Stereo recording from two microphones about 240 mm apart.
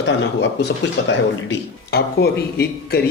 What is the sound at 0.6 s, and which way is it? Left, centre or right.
A man's voice, left.